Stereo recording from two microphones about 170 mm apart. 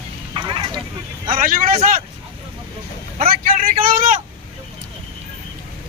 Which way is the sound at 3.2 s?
60° right (ahead or behind).